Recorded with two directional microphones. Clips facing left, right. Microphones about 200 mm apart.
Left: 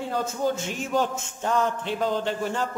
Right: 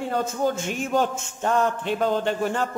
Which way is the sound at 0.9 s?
55° right (ahead or behind).